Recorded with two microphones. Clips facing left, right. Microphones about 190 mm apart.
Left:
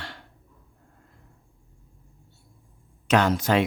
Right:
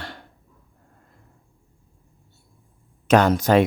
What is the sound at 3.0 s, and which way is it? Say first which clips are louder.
Speech: right 5 dB; 45° right (ahead or behind).